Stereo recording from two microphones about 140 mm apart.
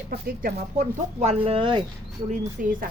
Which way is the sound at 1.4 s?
40° right (ahead or behind).